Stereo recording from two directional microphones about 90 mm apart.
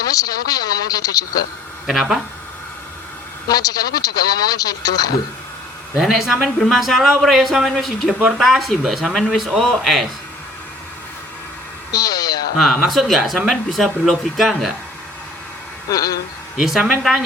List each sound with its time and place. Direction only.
0.0 s speech: 45° left (ahead or behind)
1.9 s speech: 5° right (ahead or behind)
3.4 s speech: 45° left (ahead or behind)
6.0 s speech: centre (ahead or behind)
11.9 s speech: 45° left (ahead or behind)
12.9 s speech: centre (ahead or behind)
15.9 s speech: 45° left (ahead or behind)
16.6 s speech: 5° right (ahead or behind)